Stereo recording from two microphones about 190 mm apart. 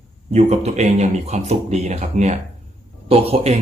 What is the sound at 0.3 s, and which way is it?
Speech, 35° right (ahead or behind).